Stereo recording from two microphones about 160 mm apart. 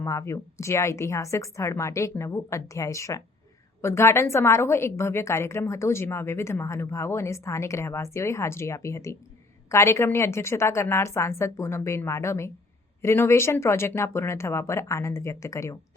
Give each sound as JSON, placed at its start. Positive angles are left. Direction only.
{"t": 0.0, "sound": "a woman's voice", "side_deg": 20}